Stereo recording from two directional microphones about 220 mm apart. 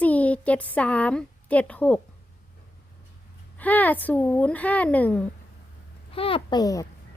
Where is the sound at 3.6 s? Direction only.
5° left (ahead or behind).